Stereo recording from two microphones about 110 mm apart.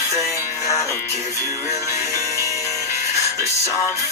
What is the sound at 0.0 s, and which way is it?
Music, 30° left (ahead or behind).